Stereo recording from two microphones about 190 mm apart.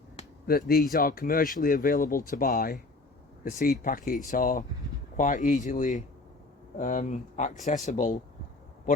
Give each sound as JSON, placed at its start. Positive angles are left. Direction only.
{"t": 0.4, "sound": "speech", "side_deg": 50}